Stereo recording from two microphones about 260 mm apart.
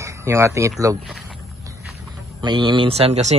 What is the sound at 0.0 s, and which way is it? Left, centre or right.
Speech, centre.